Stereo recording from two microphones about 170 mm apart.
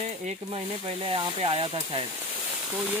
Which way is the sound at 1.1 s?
30° right (ahead or behind).